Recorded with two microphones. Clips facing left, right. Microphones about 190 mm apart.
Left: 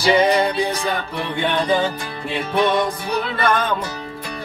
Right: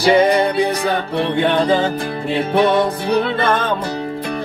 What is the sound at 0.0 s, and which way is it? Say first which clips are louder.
Music: right 3 dB; 55° right (ahead or behind).